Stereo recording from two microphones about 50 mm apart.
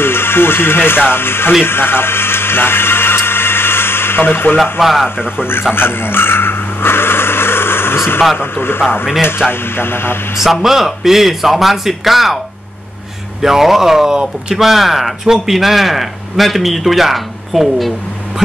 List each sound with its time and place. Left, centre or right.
0.0 s speech: left
1.6 s radio: left
4.7 s speech: centre
5.8 s a sound: left
8.4 s speech: left
10.3 s speech: centre
13.4 s speech: centre